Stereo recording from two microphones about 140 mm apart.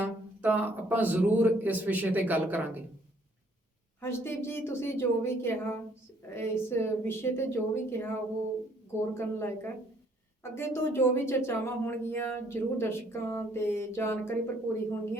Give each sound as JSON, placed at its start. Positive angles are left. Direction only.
{"t": 0.0, "sound": "speech", "side_deg": -15}
{"t": 4.0, "sound": "speech", "side_deg": 15}